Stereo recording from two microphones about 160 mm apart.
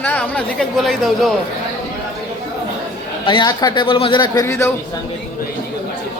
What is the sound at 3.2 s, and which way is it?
A man's voice, 30° left (ahead or behind).